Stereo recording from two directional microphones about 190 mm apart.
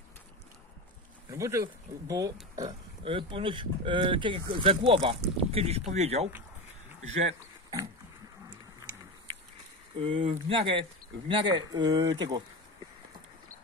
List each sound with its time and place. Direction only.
1.3 s speech: 15° right (ahead or behind); by 6.3 s 35° right (ahead or behind)
8.5 s a sound: 20° right (ahead or behind)
9.9 s speech: 30° right (ahead or behind)